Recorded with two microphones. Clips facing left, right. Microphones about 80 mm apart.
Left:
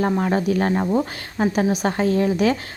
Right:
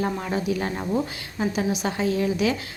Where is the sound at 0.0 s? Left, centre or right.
Left.